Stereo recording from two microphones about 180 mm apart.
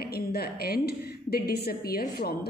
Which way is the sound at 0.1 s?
60° left (ahead or behind).